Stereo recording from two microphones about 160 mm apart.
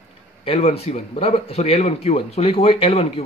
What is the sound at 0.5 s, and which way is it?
A man's voice, 40° left (ahead or behind).